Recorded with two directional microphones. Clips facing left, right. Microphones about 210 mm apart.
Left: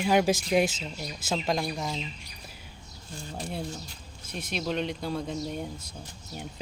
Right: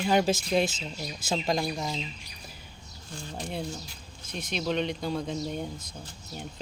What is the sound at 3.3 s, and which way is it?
Speech, 5° left (ahead or behind).